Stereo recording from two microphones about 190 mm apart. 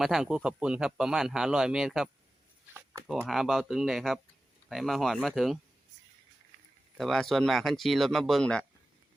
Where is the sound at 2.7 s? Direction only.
10° right (ahead or behind).